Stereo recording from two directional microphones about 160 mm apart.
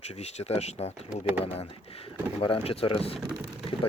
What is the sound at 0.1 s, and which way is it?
Speech, 40° left (ahead or behind).